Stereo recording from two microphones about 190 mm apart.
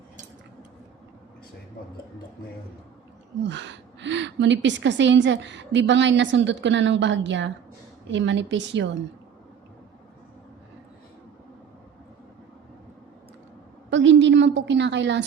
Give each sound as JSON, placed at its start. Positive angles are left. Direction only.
{"t": 3.4, "sound": "a woman's voice", "side_deg": -70}
{"t": 13.9, "sound": "a woman's voice", "side_deg": -75}